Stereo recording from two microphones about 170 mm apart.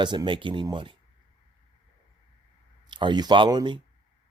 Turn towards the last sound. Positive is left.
turn(degrees=-25)  # may be behind; listen again after turning